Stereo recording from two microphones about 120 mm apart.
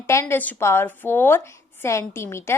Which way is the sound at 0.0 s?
20° left (ahead or behind).